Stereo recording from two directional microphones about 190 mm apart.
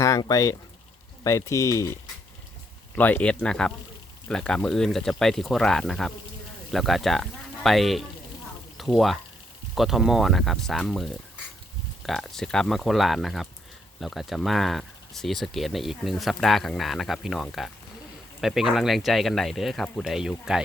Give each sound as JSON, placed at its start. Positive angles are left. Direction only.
{"t": 0.0, "sound": "speech", "side_deg": 20}